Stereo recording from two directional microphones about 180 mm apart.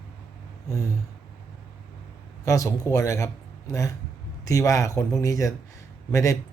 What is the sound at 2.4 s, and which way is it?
Speech, 15° left (ahead or behind).